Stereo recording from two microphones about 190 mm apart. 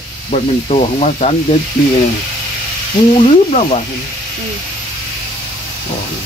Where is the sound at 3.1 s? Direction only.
30° left (ahead or behind).